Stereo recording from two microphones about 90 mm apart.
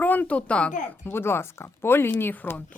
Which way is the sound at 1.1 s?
25° left (ahead or behind).